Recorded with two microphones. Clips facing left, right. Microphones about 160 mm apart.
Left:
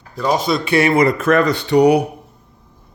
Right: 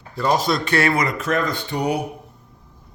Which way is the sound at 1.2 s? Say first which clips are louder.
Left 7 dB; 65° left (ahead or behind).